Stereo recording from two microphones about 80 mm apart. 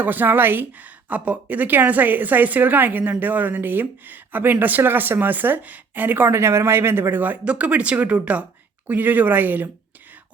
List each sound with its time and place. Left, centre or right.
0.0 s a woman's voice: right